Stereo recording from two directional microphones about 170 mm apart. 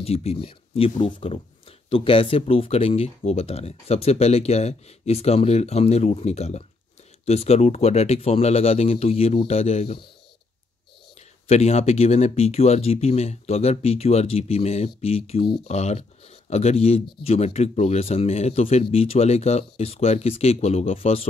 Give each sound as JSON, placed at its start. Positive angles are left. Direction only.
{"t": 0.0, "sound": "speech", "side_deg": 35}
{"t": 11.4, "sound": "speech", "side_deg": 40}